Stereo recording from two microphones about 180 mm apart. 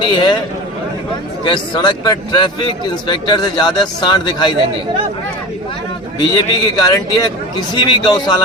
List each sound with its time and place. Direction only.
0.0 s speech: 25° left (ahead or behind)
1.5 s speech: 25° left (ahead or behind)
6.1 s speech: 20° left (ahead or behind)